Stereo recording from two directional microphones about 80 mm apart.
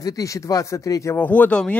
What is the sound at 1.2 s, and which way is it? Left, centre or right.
Speech, centre.